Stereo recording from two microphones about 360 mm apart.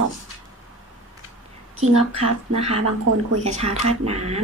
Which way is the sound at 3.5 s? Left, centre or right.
Centre.